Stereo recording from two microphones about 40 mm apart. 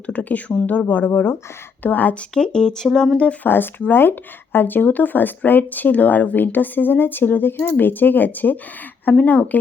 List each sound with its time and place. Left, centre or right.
0.1 s speech: left
1.1 s speech: left
1.8 s speech: left
2.3 s speech: centre
2.8 s speech: centre
3.4 s speech: left